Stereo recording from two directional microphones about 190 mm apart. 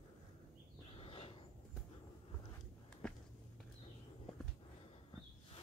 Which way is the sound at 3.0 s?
5° left (ahead or behind).